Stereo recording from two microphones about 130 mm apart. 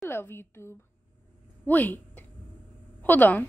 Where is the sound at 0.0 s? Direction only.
20° left (ahead or behind).